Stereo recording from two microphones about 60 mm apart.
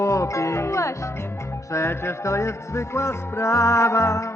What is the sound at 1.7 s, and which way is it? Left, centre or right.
Music, left.